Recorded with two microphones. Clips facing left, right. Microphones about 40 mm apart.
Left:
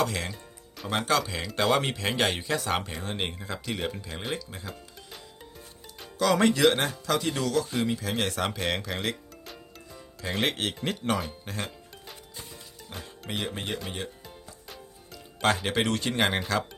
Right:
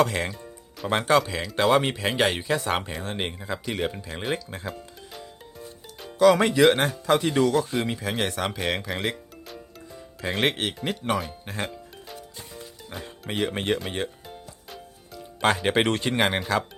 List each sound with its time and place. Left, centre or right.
0.0 s speech: right
1.2 s speech: centre
3.0 s speech: centre
4.7 s music: centre
6.1 s speech: centre
7.0 s speech: right
10.2 s speech: right
10.5 s speech: centre
12.9 s speech: centre
13.3 s speech: right
14.3 s music: centre
15.4 s speech: centre
15.6 s speech: right
16.0 s speech: centre